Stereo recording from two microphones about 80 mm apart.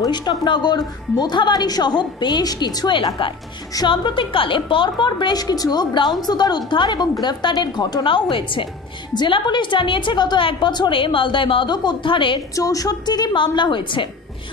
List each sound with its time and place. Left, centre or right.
0.0 s a woman's voice: left
3.2 s a woman's voice: left
9.1 s a woman's voice: left
12.5 s a woman's voice: left